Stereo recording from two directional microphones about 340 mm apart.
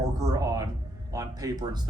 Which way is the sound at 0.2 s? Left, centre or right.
Centre.